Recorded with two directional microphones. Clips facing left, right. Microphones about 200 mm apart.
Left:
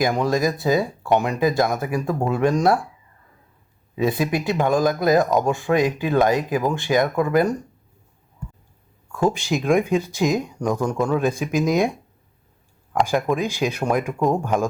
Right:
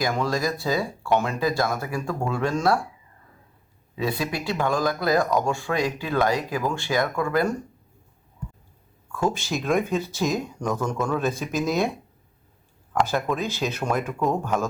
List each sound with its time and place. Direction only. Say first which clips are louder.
0.2 s speech: left 5 dB; 20° left (ahead or behind)
3.9 s speech: left 6 dB; 20° left (ahead or behind)
9.1 s speech: left 4 dB; 15° left (ahead or behind)
12.9 s speech: left 3 dB; 15° left (ahead or behind)